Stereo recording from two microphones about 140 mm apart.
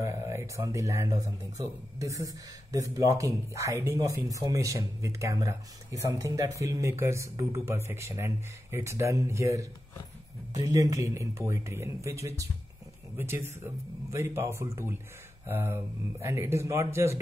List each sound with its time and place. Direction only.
0.0 s speech: 20° right (ahead or behind)